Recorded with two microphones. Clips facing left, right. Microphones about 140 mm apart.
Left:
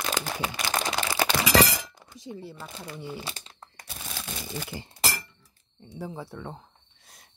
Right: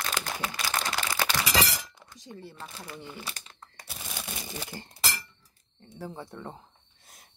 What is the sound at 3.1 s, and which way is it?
Speech, 25° left (ahead or behind).